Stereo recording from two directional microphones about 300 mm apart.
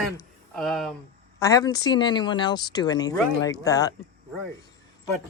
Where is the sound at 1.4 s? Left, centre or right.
Centre.